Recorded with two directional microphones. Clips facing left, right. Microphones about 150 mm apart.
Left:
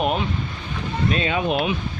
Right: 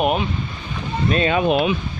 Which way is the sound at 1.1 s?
50° right (ahead or behind).